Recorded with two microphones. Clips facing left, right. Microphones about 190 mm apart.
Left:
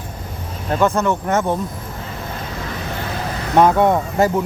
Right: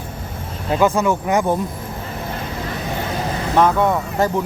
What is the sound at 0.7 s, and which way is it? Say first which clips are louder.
Speech: right 1 dB; 5° right (ahead or behind).